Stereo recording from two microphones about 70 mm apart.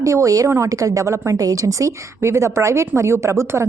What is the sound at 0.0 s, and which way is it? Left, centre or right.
A woman's voice, right.